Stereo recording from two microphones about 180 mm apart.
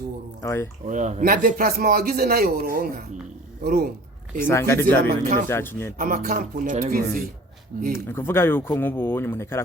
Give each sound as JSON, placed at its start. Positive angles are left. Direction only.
{"t": 0.4, "sound": "speech", "side_deg": 15}
{"t": 0.9, "sound": "a man's voice", "side_deg": -45}
{"t": 4.4, "sound": "speech", "side_deg": 15}
{"t": 6.0, "sound": "a man's voice", "side_deg": -50}
{"t": 8.1, "sound": "speech", "side_deg": 15}